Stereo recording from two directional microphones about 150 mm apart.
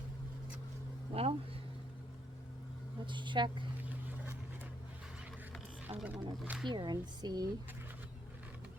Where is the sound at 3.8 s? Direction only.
10° right (ahead or behind).